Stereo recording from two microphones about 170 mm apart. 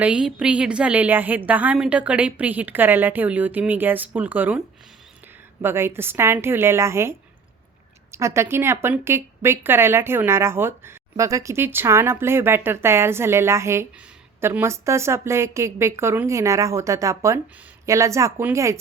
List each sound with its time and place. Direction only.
0.0 s a woman's voice: 5° right (ahead or behind)
5.6 s a woman's voice: 15° right (ahead or behind)